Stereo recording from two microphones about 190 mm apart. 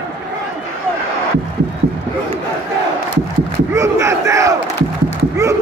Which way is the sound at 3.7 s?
15° right (ahead or behind).